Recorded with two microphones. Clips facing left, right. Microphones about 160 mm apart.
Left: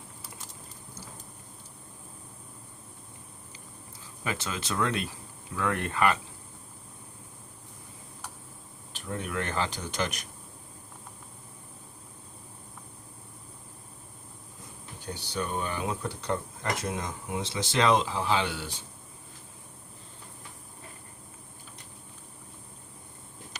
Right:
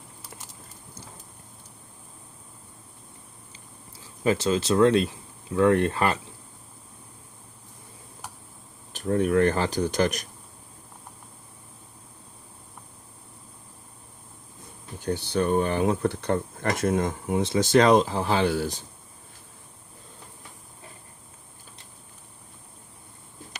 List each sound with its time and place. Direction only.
4.2 s speech: 30° right (ahead or behind)
8.9 s speech: 45° right (ahead or behind)
15.0 s speech: 55° right (ahead or behind)